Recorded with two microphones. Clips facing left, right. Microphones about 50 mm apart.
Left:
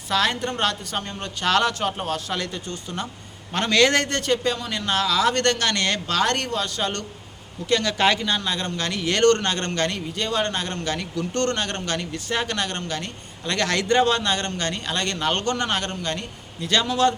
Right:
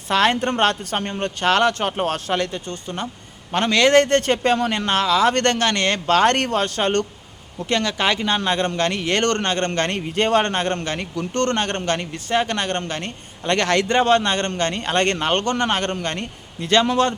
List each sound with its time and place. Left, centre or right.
0.1 s a woman's voice: right
1.4 s a man's voice: right
2.0 s a woman's voice: right
2.3 s a man's voice: right
3.5 s a man's voice: right
4.0 s a woman's voice: right
5.0 s a man's voice: right
7.7 s a man's voice: right
7.9 s speech: centre
8.4 s a man's voice: right
10.2 s a man's voice: right
15.2 s a man's voice: right
15.9 s a man's voice: right